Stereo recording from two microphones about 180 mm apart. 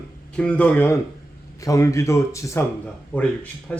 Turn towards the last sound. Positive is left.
turn(degrees=10)  # may be behind; listen again after turning